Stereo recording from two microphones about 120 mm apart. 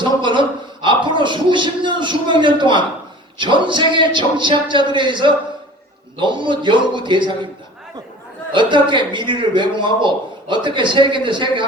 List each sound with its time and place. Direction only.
0.0 s a sound: 40° right (ahead or behind)
3.3 s a man's voice: 40° right (ahead or behind)
8.5 s a man's voice: 40° right (ahead or behind)